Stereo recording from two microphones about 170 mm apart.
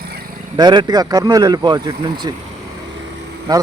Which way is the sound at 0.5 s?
25° right (ahead or behind).